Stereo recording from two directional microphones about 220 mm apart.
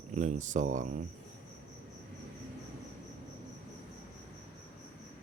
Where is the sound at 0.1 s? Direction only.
35° right (ahead or behind).